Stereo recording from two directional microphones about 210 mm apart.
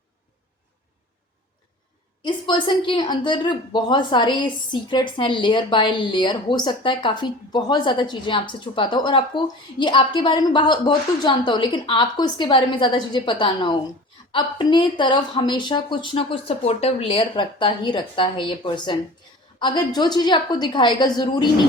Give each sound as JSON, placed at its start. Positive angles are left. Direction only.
{"t": 2.2, "sound": "a woman's voice", "side_deg": 20}